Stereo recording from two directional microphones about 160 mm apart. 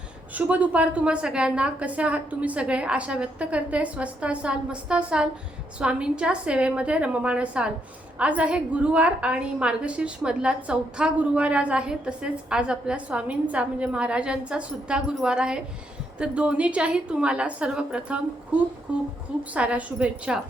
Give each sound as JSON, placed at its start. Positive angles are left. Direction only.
{"t": 0.3, "sound": "a woman's voice", "side_deg": -10}